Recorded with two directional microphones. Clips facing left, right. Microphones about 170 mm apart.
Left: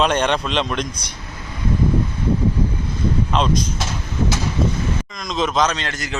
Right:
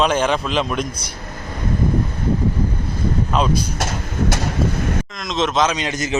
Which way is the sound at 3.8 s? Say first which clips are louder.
Right 1 dB; 55° right (ahead or behind).